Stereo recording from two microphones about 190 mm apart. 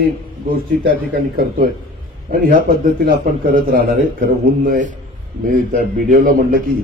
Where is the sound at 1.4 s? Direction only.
50° right (ahead or behind).